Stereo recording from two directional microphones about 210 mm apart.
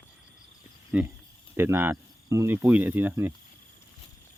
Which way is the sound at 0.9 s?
10° right (ahead or behind).